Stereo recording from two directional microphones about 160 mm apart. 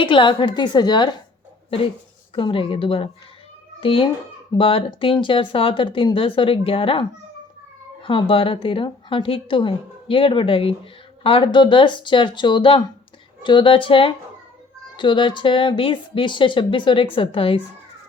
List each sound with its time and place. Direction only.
0.0 s a woman's voice: 30° left (ahead or behind)
2.3 s a woman's voice: 35° left (ahead or behind)
8.0 s a woman's voice: 30° left (ahead or behind)